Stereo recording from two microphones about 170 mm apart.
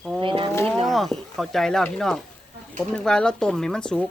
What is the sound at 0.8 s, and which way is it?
Speech, centre (ahead or behind).